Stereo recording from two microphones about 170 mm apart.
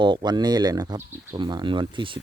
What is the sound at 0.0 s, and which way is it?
Speech, 25° right (ahead or behind).